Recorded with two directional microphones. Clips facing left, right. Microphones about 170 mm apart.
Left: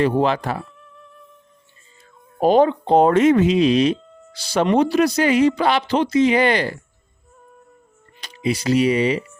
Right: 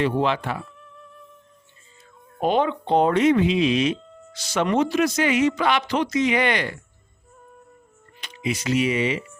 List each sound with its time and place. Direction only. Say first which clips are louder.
0.2 s speech: left 4 dB; 40° left (ahead or behind)
0.8 s music: even; centre (ahead or behind)
2.4 s speech: left 6 dB; 40° left (ahead or behind)
3.9 s music: left 2 dB; centre (ahead or behind)
4.3 s speech: left 4 dB; 30° left (ahead or behind)
8.2 s speech: left 5 dB; 35° left (ahead or behind)